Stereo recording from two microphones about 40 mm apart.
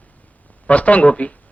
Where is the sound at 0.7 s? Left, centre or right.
Left.